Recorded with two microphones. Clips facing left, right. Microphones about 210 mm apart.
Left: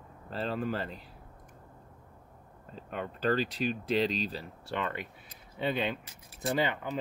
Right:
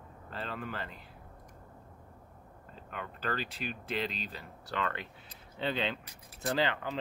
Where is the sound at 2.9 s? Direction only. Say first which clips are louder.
Left 7 dB; 35° left (ahead or behind).